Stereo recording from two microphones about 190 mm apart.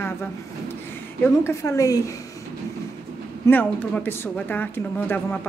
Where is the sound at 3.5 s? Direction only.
10° left (ahead or behind).